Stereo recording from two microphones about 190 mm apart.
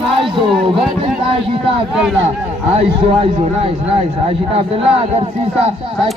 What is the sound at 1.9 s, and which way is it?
Speech, 5° right (ahead or behind).